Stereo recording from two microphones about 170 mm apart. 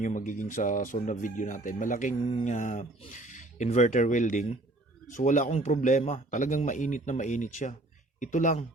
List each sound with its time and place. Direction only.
0.0 s speech: 50° left (ahead or behind)